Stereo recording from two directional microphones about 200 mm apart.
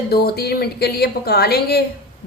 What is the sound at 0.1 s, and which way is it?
A woman's voice, 50° left (ahead or behind).